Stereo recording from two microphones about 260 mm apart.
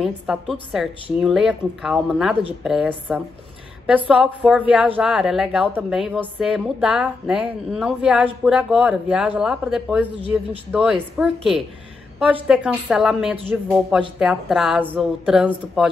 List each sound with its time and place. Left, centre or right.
0.0 s a woman's voice: centre